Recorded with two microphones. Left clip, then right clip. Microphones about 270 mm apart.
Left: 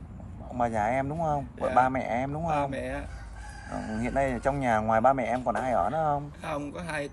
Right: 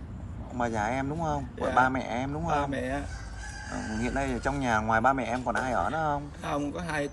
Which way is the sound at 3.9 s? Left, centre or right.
Left.